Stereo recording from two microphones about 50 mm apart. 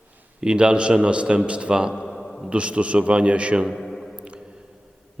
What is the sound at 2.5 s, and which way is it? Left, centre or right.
A man's voice, right.